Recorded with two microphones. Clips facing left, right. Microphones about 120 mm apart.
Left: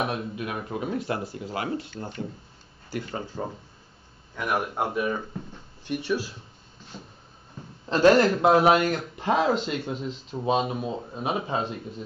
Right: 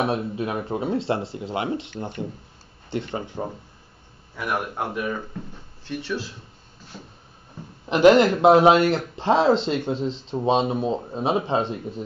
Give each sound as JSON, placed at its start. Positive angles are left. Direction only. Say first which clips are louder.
{"t": 0.0, "sound": "speech", "louder": "right 5 dB", "side_deg": -30}
{"t": 4.9, "sound": "speech", "louder": "left 1 dB", "side_deg": 15}
{"t": 7.8, "sound": "speech", "louder": "right 3 dB", "side_deg": -15}